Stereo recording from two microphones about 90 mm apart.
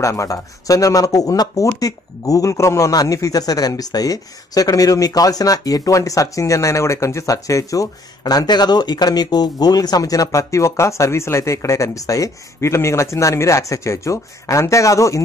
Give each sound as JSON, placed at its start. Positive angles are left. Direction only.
{"t": 0.0, "sound": "speech", "side_deg": 35}